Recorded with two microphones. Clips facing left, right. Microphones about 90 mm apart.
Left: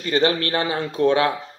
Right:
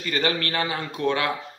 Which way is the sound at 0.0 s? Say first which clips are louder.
Left 5 dB; 30° left (ahead or behind).